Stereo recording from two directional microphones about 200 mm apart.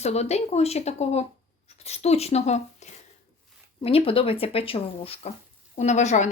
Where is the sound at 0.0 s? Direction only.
35° left (ahead or behind).